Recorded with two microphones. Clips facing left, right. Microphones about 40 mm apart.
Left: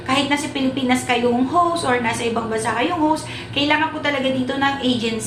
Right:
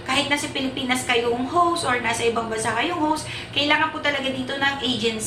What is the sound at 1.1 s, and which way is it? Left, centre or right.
Speech, left.